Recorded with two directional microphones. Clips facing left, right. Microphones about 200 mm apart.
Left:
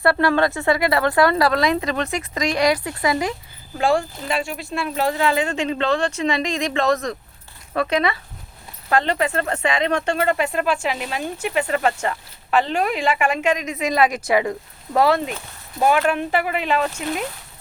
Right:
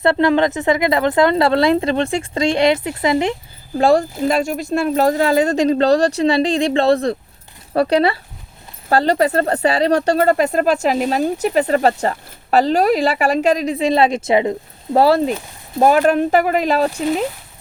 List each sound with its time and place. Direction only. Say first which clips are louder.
0.0 s speech: right 4 dB; 20° right (ahead or behind)
3.8 s speech: right 6 dB; 40° right (ahead or behind)